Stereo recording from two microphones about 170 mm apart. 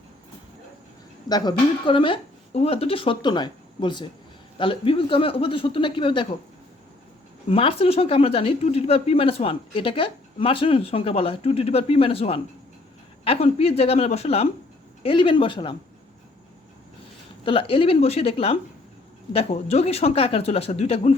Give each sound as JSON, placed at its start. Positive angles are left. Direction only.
{"t": 1.3, "sound": "speech", "side_deg": 25}
{"t": 7.4, "sound": "speech", "side_deg": 35}
{"t": 17.4, "sound": "speech", "side_deg": 30}